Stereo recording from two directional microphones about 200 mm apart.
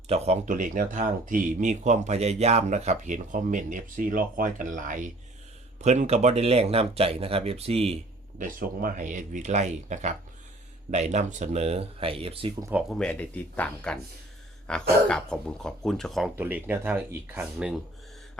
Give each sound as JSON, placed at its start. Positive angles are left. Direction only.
{"t": 0.1, "sound": "speech", "side_deg": -30}
{"t": 8.4, "sound": "speech", "side_deg": -45}
{"t": 12.9, "sound": "speech", "side_deg": 5}
{"t": 16.3, "sound": "speech", "side_deg": -10}